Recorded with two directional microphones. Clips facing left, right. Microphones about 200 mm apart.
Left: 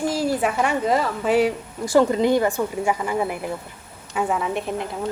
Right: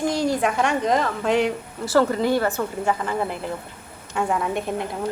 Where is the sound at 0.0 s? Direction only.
5° left (ahead or behind).